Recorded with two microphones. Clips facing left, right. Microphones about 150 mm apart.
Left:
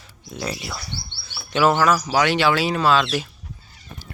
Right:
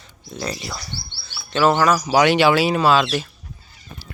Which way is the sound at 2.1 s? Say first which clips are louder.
Right 4 dB; 15° right (ahead or behind).